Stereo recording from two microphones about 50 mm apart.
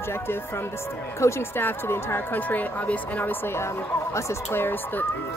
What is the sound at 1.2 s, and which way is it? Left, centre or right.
Speech, left.